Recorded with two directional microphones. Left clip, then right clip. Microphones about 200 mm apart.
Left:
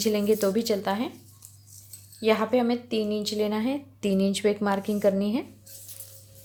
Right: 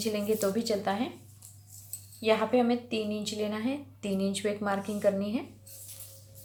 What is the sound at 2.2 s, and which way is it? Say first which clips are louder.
Speech: left 2 dB; 40° left (ahead or behind).